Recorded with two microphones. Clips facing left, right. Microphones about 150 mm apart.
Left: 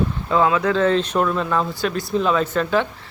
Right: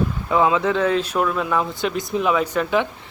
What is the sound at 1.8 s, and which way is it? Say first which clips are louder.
Speech: left 1 dB; 20° right (ahead or behind).